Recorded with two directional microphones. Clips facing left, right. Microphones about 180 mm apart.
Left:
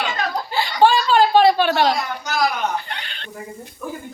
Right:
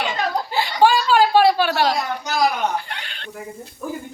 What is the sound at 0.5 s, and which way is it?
Laughter, 10° right (ahead or behind).